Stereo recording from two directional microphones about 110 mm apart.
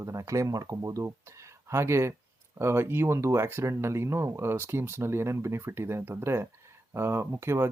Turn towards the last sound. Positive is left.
turn(degrees=-25)  # may be behind; listen again after turning